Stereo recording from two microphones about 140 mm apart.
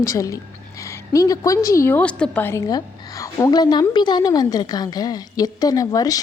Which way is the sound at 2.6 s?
25° left (ahead or behind).